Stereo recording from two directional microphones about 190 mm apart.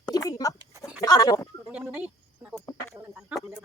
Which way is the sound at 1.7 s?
5° right (ahead or behind).